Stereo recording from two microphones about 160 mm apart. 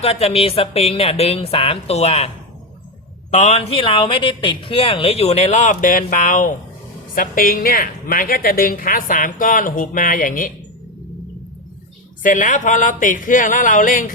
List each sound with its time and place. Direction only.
0.0 s speech: 40° left (ahead or behind)
3.3 s a woman's voice: 45° left (ahead or behind)
12.2 s a woman's voice: 55° left (ahead or behind)